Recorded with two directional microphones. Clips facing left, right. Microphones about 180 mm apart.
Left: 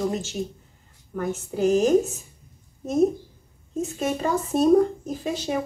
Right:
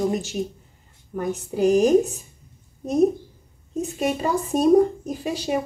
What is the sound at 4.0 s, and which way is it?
Speech, 10° right (ahead or behind).